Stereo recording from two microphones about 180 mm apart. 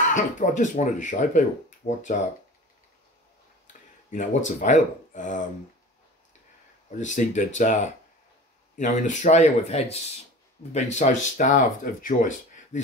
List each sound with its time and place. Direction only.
0.1 s speech: 45° left (ahead or behind)
4.1 s speech: 45° left (ahead or behind)
7.0 s speech: 45° left (ahead or behind)